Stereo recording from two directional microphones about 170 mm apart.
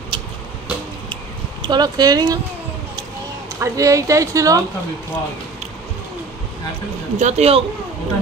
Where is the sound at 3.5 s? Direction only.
20° right (ahead or behind).